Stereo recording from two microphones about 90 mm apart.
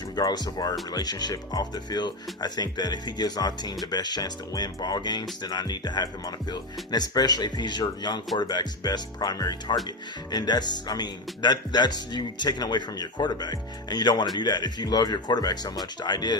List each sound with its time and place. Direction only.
0.2 s speech: 50° left (ahead or behind)